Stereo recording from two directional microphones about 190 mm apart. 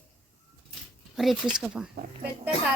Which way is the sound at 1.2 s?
Centre (ahead or behind).